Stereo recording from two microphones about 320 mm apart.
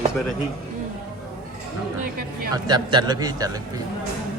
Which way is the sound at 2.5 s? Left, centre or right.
Centre.